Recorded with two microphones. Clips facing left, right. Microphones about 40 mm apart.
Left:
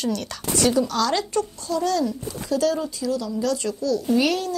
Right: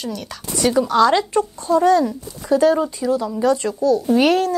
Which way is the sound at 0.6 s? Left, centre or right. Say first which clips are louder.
Right 6 dB; right.